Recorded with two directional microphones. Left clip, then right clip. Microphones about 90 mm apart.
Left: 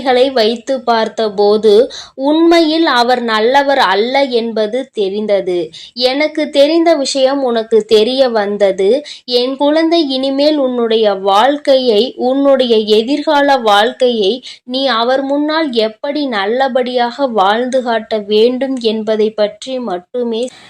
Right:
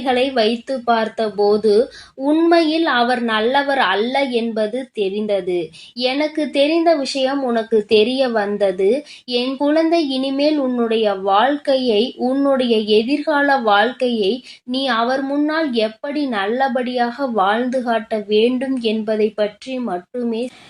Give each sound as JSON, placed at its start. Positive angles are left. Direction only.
{"t": 0.0, "sound": "a woman's voice", "side_deg": 30}